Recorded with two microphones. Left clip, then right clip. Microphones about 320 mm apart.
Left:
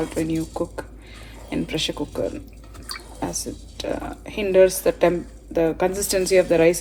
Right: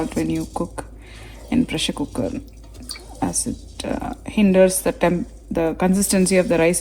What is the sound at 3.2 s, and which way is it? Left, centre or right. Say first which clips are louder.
Speech: right 5 dB; right.